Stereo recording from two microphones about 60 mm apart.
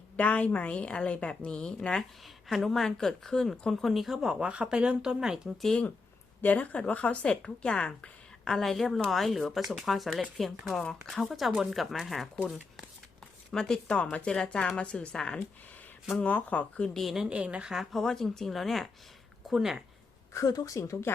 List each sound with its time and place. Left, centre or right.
0.2 s a woman's voice: left; by 5.5 s centre
6.4 s speech: left; by 12.3 s centre
13.5 s a woman's voice: centre
16.2 s speech: left
16.9 s speech: centre
17.2 s a woman's voice: centre
17.9 s speech: centre
19.5 s speech: centre
20.3 s a woman's voice: left